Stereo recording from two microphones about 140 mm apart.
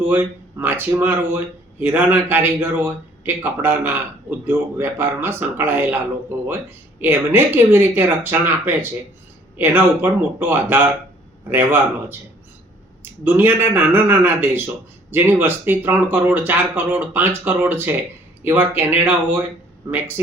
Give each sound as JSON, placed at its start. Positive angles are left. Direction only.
{"t": 0.0, "sound": "a man's voice", "side_deg": -15}